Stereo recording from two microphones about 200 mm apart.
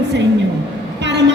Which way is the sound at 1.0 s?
60° right (ahead or behind).